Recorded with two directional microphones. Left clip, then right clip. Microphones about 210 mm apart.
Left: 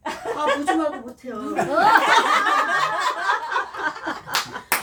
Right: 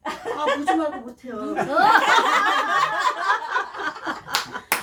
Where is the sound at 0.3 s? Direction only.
5° left (ahead or behind).